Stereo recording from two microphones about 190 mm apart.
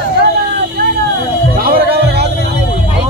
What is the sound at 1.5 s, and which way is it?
Music, 50° right (ahead or behind).